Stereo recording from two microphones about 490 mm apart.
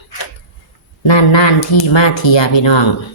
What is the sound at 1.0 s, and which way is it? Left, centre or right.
Speech, left.